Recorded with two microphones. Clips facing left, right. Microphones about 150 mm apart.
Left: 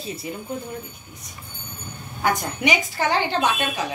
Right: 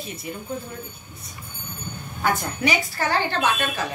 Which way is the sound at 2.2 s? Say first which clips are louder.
Left 1 dB; 15° left (ahead or behind).